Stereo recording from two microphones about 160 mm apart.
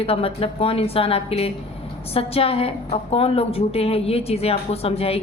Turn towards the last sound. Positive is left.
turn(degrees=40)  # may be behind; listen again after turning